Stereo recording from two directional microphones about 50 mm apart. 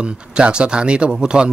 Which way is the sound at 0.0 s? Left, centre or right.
Centre.